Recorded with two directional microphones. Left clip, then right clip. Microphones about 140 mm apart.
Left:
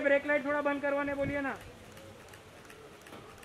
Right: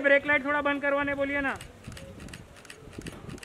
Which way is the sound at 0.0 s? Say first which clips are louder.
Right 5 dB; 50° right (ahead or behind).